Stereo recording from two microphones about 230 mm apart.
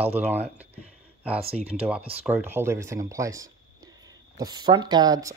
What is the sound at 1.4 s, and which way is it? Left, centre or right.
Speech, right.